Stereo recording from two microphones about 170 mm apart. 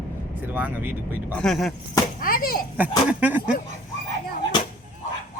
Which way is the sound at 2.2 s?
55° left (ahead or behind).